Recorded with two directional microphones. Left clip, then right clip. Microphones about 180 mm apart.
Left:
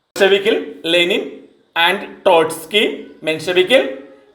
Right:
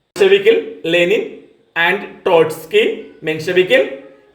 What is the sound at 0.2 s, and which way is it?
Speech, 30° left (ahead or behind).